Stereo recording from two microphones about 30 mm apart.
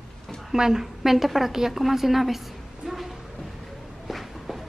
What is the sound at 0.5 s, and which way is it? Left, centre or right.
A woman's voice, centre.